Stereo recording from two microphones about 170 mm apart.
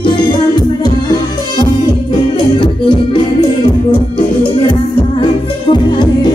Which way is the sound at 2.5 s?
30° left (ahead or behind).